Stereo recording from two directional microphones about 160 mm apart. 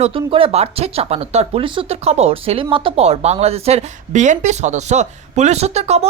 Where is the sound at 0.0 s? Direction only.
35° right (ahead or behind).